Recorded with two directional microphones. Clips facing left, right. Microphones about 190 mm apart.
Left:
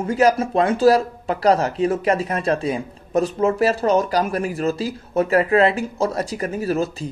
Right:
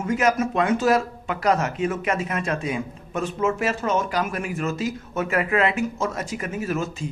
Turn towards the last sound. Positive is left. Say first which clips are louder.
# left 5 dB
turn(degrees=35)  # may be behind; listen again after turning